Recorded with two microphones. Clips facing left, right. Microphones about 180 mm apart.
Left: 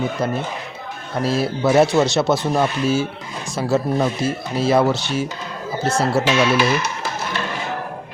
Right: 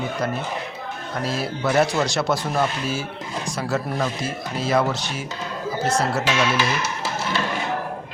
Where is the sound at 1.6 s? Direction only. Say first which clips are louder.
Left 5 dB; 25° left (ahead or behind).